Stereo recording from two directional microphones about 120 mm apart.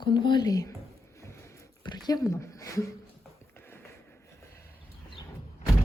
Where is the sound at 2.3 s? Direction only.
25° left (ahead or behind).